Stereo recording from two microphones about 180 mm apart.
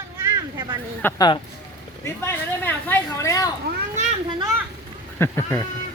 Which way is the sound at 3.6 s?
40° right (ahead or behind).